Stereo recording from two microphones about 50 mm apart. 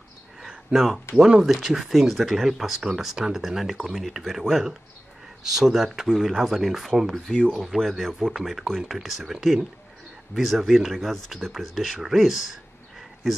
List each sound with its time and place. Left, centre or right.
1.1 s speech: left
1.4 s speech: centre
8.5 s speech: centre